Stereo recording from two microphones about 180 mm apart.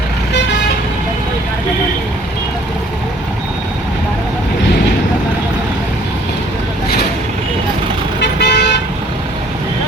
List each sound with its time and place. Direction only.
8.2 s vehicle: 70° left (ahead or behind)